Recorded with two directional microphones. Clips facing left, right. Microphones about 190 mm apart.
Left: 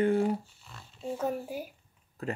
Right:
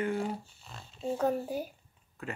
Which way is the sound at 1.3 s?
10° left (ahead or behind).